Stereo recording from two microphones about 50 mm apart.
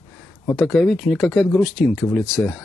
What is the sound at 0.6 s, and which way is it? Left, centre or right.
Speech, centre.